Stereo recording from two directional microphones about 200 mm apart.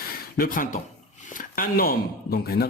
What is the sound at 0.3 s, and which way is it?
Speech, 45° left (ahead or behind).